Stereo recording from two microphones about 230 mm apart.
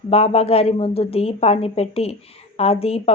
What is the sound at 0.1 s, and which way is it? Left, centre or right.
Speech, left.